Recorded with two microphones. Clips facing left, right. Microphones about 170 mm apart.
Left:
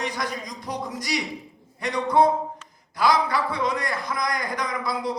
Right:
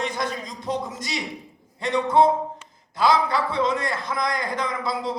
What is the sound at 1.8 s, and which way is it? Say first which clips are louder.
A man's voice: right 1 dB; 25° right (ahead or behind).